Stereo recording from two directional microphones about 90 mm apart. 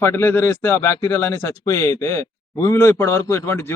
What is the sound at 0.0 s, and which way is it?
Speech, 25° left (ahead or behind).